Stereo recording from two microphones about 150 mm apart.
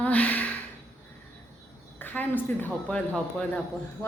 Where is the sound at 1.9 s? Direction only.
10° left (ahead or behind).